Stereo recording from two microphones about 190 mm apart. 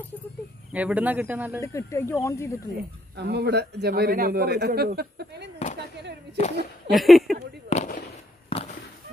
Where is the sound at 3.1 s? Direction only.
60° right (ahead or behind).